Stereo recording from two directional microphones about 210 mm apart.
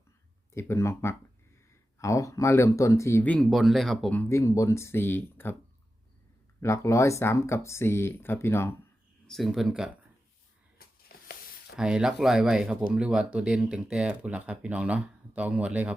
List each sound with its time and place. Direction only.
0.5 s speech: 15° left (ahead or behind)
6.6 s speech: 15° left (ahead or behind)
9.2 s speech: centre (ahead or behind)
10.8 s a sound: 45° left (ahead or behind)
11.8 s speech: 5° right (ahead or behind)